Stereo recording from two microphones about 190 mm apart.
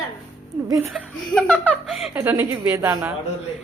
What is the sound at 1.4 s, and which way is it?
Speech, 5° left (ahead or behind).